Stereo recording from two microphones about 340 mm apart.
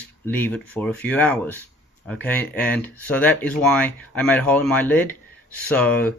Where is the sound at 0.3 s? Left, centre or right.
Centre.